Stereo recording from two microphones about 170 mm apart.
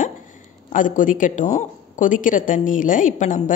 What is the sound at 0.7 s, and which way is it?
Speech, 50° left (ahead or behind).